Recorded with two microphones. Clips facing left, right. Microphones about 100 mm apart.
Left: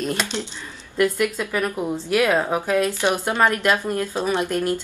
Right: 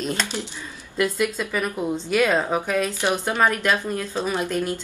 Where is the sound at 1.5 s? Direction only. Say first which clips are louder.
Left 1 dB; 5° left (ahead or behind).